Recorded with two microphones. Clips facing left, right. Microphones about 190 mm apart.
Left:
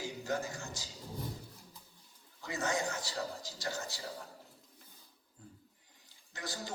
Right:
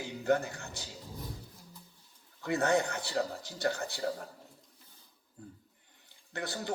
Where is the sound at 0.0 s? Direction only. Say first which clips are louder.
Right 7 dB; 60° right (ahead or behind).